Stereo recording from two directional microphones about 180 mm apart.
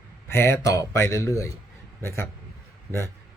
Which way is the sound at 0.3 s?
15° left (ahead or behind).